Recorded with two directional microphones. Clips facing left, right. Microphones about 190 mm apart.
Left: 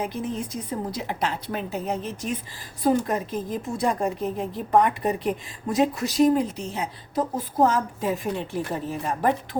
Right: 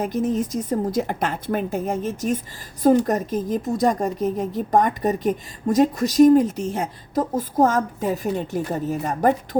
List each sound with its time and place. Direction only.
0.0 s a woman's voice: 45° right (ahead or behind)